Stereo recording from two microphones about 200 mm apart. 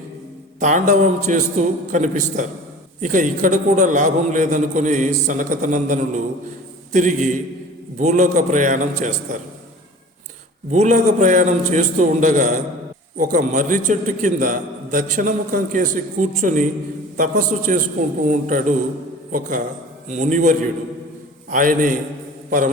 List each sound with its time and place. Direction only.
0.6 s a man's voice: 40° right (ahead or behind)
10.7 s a man's voice: 40° right (ahead or behind)
22.4 s a sound: 45° right (ahead or behind)